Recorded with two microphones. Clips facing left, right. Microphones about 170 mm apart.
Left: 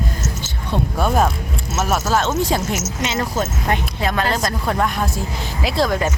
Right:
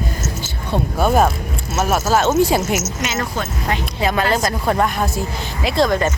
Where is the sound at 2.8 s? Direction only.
30° left (ahead or behind).